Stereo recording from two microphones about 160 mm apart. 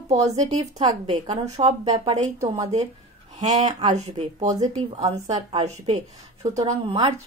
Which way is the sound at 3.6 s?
45° right (ahead or behind).